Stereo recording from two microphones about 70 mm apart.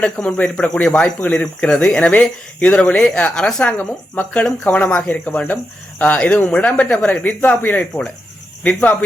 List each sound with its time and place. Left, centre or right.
0.0 s speech: centre
3.8 s speech: left